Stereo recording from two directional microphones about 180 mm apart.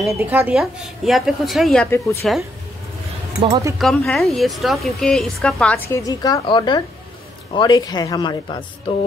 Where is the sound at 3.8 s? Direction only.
Centre (ahead or behind).